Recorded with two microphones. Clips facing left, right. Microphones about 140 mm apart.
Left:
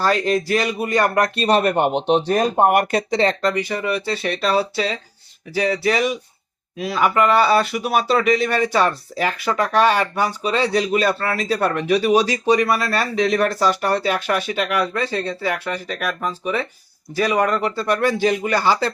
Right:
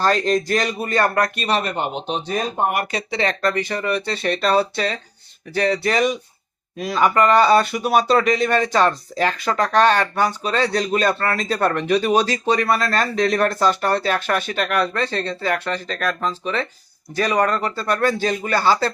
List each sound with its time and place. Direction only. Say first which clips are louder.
0.0 s speech: even; 5° left (ahead or behind)
1.4 s speech: left 5 dB; 45° left (ahead or behind); by 2.4 s 75° left (ahead or behind)
2.4 s speech: left 6 dB; 55° left (ahead or behind)
3.4 s speech: even; 15° left (ahead or behind)